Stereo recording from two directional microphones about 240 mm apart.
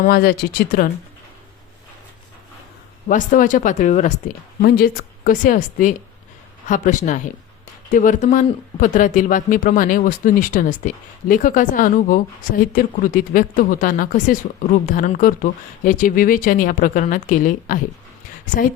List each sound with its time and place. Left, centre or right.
0.0 s speech: left
3.1 s speech: left